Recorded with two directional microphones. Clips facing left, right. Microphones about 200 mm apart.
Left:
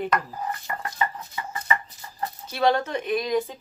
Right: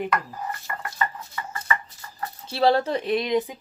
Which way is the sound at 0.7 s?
25° left (ahead or behind).